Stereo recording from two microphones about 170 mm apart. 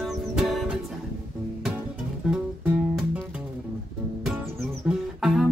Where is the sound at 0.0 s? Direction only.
Centre (ahead or behind).